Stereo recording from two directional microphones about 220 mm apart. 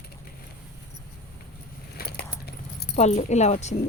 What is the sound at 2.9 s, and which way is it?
Speech, 30° left (ahead or behind).